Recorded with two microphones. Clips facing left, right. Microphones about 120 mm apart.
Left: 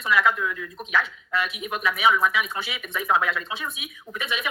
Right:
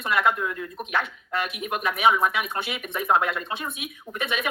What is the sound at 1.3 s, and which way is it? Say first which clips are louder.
Speech: even; 50° right (ahead or behind).